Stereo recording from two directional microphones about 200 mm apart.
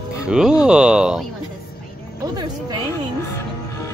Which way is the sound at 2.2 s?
20° right (ahead or behind).